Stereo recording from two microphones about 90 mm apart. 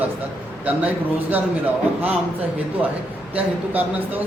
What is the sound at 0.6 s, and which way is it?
Speech, 15° right (ahead or behind).